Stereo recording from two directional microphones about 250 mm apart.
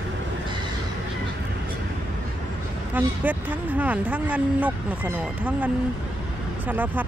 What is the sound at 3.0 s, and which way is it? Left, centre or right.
Speech, centre.